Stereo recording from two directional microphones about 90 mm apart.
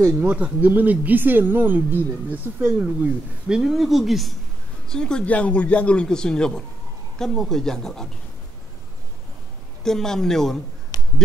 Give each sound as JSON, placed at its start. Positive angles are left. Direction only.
{"t": 0.2, "sound": "speech", "side_deg": -15}
{"t": 9.8, "sound": "speech", "side_deg": 5}
{"t": 10.9, "sound": "a sound", "side_deg": 50}